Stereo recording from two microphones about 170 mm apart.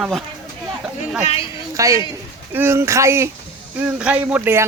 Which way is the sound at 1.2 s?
35° left (ahead or behind).